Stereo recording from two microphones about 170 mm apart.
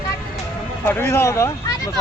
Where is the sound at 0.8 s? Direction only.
15° left (ahead or behind).